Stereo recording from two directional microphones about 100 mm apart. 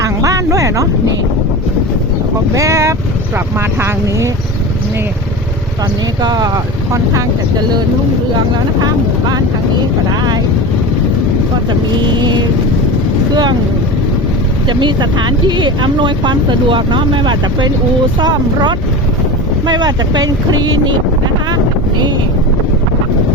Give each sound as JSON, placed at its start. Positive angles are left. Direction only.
{"t": 0.0, "sound": "a sound", "side_deg": -35}
{"t": 2.6, "sound": "speech", "side_deg": -30}
{"t": 6.2, "sound": "speech", "side_deg": -40}
{"t": 8.8, "sound": "speech", "side_deg": -40}
{"t": 14.7, "sound": "speech", "side_deg": -50}
{"t": 19.6, "sound": "speech", "side_deg": -45}